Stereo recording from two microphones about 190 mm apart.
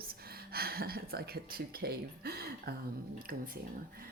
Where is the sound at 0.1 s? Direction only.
55° right (ahead or behind).